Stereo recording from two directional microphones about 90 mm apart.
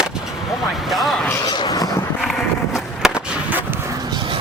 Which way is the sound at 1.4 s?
50° left (ahead or behind).